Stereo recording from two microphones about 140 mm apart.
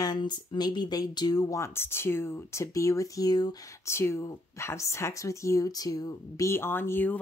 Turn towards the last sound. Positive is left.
turn(degrees=15)  # may be behind; listen again after turning